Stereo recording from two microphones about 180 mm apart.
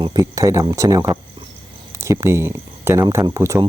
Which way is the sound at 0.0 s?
20° right (ahead or behind).